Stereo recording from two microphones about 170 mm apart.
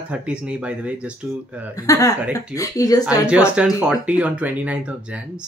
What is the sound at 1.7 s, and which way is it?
Speech, 20° left (ahead or behind).